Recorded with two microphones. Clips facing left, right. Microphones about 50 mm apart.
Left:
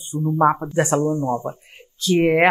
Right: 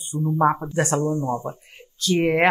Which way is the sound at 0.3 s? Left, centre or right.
Centre.